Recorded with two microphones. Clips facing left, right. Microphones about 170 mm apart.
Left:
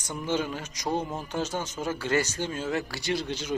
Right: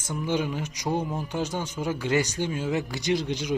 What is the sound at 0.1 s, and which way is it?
Speech, 10° right (ahead or behind).